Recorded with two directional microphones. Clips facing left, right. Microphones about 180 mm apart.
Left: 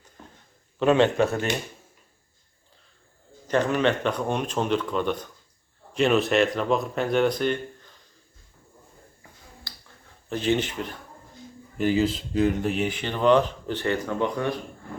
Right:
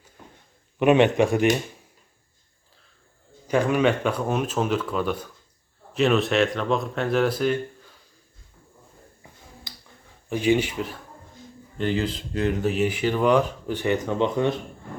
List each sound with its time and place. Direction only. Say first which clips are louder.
0.8 s speech: right 2 dB; 15° right (ahead or behind)
3.4 s speech: right 2 dB; 10° right (ahead or behind)
9.7 s finger snapping: right 2 dB; 20° right (ahead or behind)
10.2 s speech: right 3 dB; 10° right (ahead or behind)
11.8 s speech: left 3 dB; 5° left (ahead or behind); by 14.6 s 20° right (ahead or behind)